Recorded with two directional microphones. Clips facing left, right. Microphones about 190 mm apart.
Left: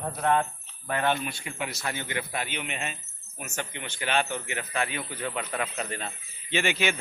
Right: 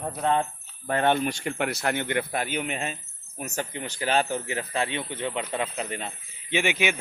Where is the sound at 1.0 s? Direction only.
55° right (ahead or behind).